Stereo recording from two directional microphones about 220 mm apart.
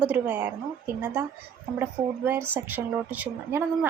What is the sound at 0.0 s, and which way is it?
Speech, 5° right (ahead or behind).